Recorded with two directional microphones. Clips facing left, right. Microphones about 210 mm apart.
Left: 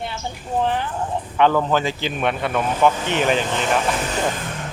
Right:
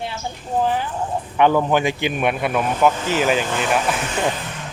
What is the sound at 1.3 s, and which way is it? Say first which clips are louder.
Speech: right 1 dB; 15° right (ahead or behind).